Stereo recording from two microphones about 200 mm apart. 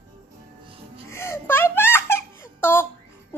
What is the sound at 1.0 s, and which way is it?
Giggle, 15° left (ahead or behind).